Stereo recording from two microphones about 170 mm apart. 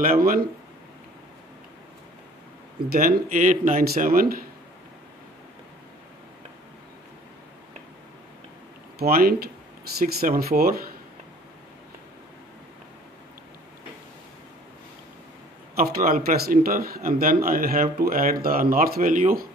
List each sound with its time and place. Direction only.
0.2 s speech: 60° right (ahead or behind)
2.9 s speech: 55° right (ahead or behind)
8.9 s speech: 60° right (ahead or behind)
15.7 s speech: 60° right (ahead or behind)